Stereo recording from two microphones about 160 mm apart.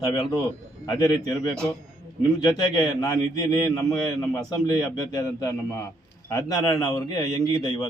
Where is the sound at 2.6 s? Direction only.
20° left (ahead or behind).